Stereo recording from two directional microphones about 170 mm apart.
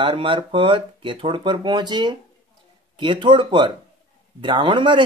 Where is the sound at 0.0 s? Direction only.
30° right (ahead or behind).